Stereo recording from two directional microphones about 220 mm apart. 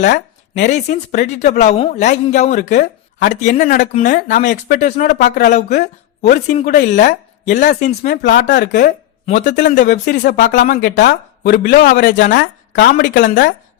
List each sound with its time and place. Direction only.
0.0 s speech: 35° left (ahead or behind)
5.6 s speech: 50° left (ahead or behind)
6.2 s speech: 35° left (ahead or behind)
9.9 s speech: 50° left (ahead or behind)
10.4 s speech: 35° left (ahead or behind)
11.1 s speech: 50° left (ahead or behind)
12.1 s a woman's voice: 40° left (ahead or behind)